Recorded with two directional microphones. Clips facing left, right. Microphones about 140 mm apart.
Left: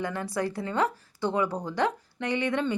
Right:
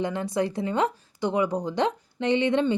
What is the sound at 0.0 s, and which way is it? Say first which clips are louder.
Speech: right 4 dB; 20° right (ahead or behind).